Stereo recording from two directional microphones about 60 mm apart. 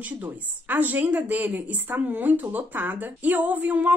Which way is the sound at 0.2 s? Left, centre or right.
Right.